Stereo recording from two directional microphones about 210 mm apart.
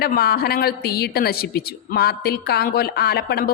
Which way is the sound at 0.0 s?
45° left (ahead or behind).